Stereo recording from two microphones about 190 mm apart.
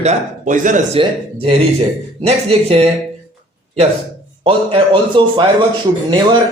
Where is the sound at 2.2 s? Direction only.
30° right (ahead or behind).